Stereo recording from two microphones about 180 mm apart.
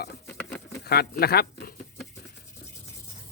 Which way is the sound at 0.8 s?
60° left (ahead or behind).